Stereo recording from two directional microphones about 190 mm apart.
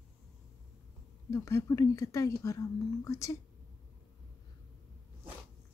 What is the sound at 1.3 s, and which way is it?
Speech, 15° left (ahead or behind).